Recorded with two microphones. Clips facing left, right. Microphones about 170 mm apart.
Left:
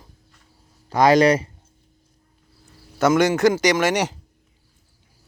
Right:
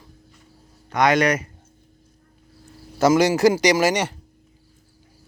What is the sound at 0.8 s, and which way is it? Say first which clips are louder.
Speech: left 4 dB; 30° left (ahead or behind).